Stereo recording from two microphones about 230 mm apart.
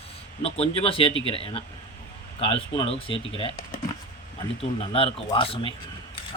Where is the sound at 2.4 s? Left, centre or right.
Left.